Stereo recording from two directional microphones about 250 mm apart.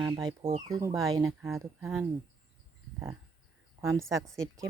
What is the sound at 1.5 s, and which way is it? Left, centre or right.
Speech, centre.